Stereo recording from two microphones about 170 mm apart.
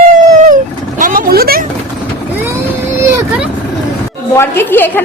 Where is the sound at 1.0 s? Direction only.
55° right (ahead or behind).